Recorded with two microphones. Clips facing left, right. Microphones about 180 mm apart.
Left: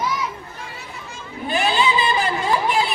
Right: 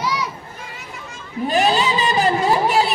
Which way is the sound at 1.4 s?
40° right (ahead or behind).